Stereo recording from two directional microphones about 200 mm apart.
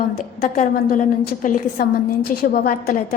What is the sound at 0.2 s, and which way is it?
A woman's voice, 40° left (ahead or behind).